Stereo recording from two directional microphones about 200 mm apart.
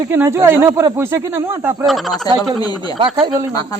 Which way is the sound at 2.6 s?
20° left (ahead or behind).